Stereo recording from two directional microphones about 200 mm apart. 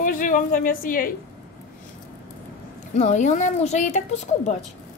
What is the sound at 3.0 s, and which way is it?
Speech, 35° left (ahead or behind).